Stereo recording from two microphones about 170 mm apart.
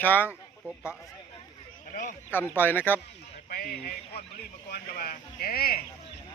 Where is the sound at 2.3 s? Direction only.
10° left (ahead or behind).